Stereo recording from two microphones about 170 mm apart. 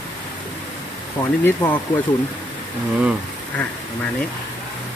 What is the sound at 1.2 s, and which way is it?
Speech, 15° left (ahead or behind).